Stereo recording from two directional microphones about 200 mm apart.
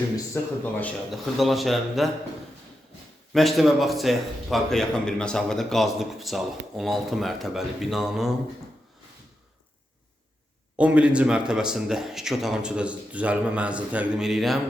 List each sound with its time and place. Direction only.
0.6 s a man's voice: 5° left (ahead or behind)
3.3 s a man's voice: centre (ahead or behind)
10.8 s a man's voice: 5° right (ahead or behind)